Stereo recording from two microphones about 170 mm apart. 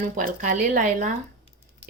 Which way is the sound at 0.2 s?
50° right (ahead or behind).